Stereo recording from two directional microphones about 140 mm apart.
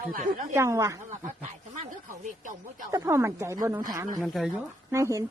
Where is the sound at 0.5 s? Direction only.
20° right (ahead or behind).